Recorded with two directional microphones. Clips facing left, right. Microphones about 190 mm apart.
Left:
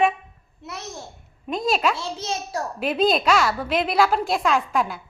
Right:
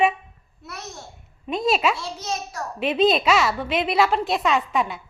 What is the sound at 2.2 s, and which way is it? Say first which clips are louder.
Speech: left 2 dB; 30° left (ahead or behind).